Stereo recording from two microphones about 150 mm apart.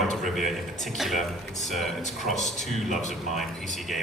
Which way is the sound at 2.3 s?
50° left (ahead or behind).